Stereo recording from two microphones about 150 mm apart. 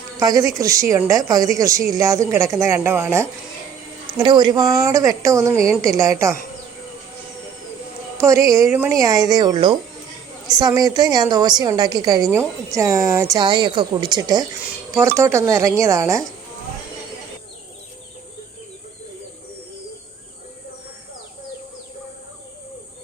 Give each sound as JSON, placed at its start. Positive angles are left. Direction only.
{"t": 0.2, "sound": "a woman's voice", "side_deg": -25}
{"t": 4.2, "sound": "a woman's voice", "side_deg": -30}
{"t": 8.2, "sound": "a woman's voice", "side_deg": -20}